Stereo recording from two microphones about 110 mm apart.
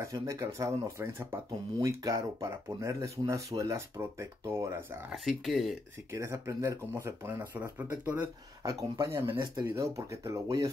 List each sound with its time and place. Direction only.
0.0 s speech: 30° right (ahead or behind)
5.1 s speech: centre (ahead or behind)
6.1 s speech: 25° right (ahead or behind)